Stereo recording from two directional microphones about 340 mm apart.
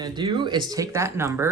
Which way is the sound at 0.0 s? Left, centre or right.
Centre.